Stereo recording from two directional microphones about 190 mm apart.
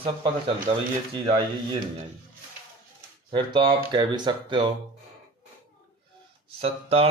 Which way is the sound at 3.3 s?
25° right (ahead or behind).